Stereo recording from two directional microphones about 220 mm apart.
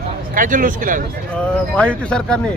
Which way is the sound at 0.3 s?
35° right (ahead or behind).